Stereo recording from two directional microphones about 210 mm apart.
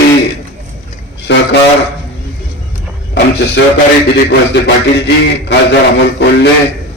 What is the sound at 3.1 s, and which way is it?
Speech, 55° left (ahead or behind).